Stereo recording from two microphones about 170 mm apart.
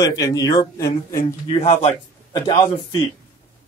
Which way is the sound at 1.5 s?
35° left (ahead or behind).